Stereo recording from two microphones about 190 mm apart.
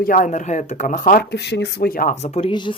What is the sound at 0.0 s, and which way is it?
Speech, 45° left (ahead or behind).